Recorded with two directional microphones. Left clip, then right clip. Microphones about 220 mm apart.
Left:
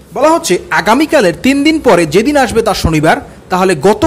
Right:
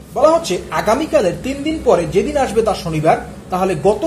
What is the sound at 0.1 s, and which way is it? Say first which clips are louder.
A woman's voice: left 3 dB; 35° left (ahead or behind).